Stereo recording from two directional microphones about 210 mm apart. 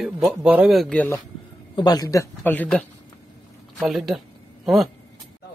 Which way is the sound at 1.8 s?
20° left (ahead or behind).